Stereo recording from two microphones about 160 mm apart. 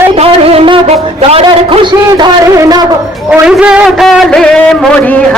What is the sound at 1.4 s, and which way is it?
A man's voice, 30° right (ahead or behind).